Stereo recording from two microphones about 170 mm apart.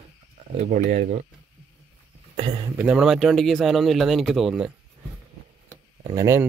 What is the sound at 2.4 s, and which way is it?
Speech, 35° right (ahead or behind).